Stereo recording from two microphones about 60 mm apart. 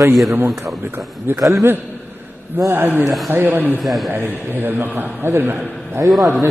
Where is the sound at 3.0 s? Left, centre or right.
Centre.